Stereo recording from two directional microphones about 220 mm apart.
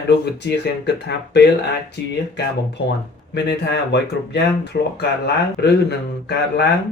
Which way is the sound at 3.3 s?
50° left (ahead or behind).